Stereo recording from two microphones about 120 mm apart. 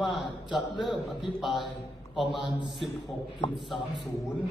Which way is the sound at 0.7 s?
Centre (ahead or behind).